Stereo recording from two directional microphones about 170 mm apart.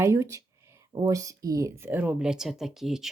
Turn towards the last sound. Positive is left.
turn(degrees=0)  # may be behind; listen again after turning